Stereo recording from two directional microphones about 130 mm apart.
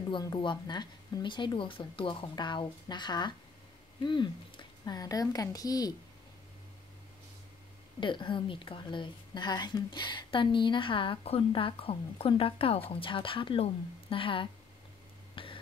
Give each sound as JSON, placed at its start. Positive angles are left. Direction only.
{"t": 0.2, "sound": "a woman's voice", "side_deg": 35}
{"t": 8.0, "sound": "a woman's voice", "side_deg": 40}
{"t": 15.3, "sound": "a sound", "side_deg": 45}